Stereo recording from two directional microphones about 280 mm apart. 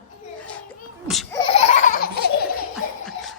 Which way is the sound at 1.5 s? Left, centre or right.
Left.